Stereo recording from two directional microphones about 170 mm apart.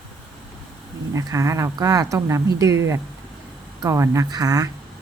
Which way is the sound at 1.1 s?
20° right (ahead or behind).